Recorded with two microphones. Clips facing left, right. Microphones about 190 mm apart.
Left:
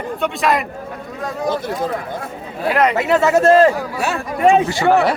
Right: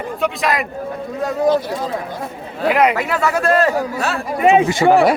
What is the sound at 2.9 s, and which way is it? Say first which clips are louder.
Speech: left 4 dB; 25° left (ahead or behind).